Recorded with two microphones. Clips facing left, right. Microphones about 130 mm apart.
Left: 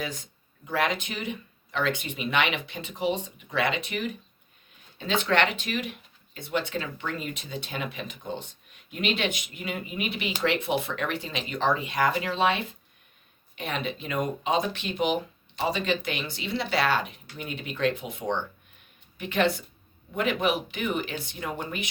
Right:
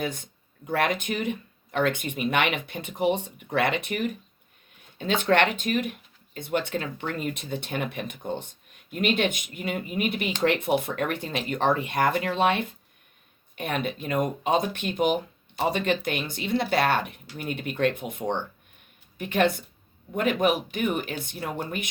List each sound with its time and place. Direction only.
0.0 s speech: 55° right (ahead or behind)